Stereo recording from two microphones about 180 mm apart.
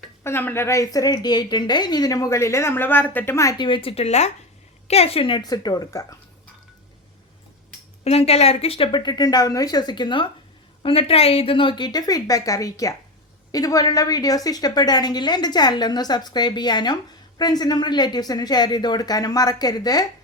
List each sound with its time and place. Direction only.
0.3 s a woman's voice: 15° left (ahead or behind)
8.0 s a woman's voice: 35° left (ahead or behind)